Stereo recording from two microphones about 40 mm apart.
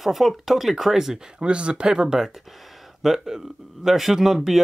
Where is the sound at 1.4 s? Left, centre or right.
Right.